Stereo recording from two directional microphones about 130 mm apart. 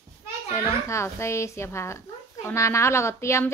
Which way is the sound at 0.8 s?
20° left (ahead or behind).